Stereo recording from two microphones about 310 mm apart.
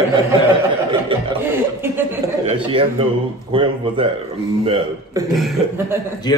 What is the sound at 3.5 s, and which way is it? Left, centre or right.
Speech, centre.